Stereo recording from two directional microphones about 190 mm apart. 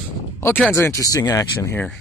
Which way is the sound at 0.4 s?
10° left (ahead or behind).